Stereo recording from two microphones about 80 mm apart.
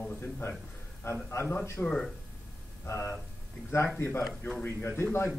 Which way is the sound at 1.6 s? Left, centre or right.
Centre.